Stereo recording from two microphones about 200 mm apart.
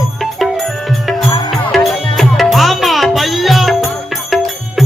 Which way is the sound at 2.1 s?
Centre (ahead or behind).